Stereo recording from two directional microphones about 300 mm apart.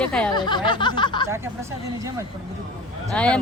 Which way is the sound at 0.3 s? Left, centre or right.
Centre.